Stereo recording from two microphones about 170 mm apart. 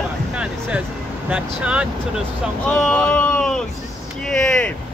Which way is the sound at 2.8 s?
10° left (ahead or behind).